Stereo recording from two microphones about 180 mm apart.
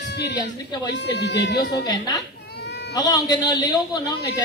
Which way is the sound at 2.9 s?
20° left (ahead or behind).